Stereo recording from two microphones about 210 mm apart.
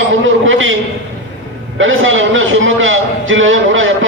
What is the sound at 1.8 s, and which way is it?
A man's voice, 65° right (ahead or behind).